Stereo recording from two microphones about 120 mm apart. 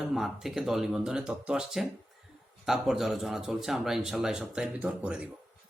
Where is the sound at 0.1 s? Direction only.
5° right (ahead or behind).